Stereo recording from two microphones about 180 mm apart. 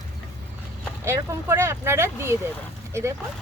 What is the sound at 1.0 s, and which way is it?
Speech, 15° right (ahead or behind).